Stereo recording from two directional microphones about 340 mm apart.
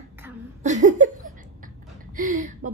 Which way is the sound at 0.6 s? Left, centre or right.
Right.